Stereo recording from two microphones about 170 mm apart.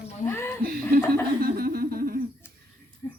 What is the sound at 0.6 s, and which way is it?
Speech, 55° right (ahead or behind).